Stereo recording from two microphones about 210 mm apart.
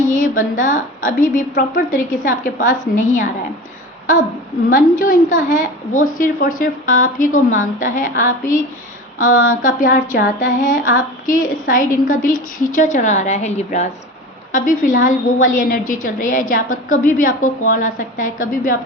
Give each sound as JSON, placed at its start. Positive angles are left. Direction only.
{"t": 0.0, "sound": "a sound", "side_deg": 40}
{"t": 0.5, "sound": "a woman's voice", "side_deg": 40}
{"t": 4.7, "sound": "a woman's voice", "side_deg": 40}